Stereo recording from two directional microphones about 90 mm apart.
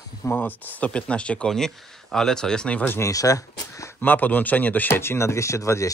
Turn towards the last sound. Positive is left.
turn(degrees=35)  # may be behind; listen again after turning